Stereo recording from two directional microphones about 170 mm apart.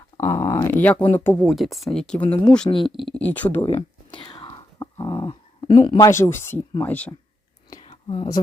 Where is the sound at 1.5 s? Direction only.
Centre (ahead or behind).